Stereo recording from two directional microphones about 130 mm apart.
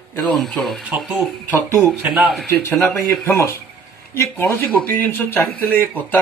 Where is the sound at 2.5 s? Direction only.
15° left (ahead or behind).